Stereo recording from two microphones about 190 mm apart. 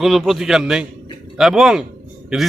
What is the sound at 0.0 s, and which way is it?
A man's voice, centre (ahead or behind).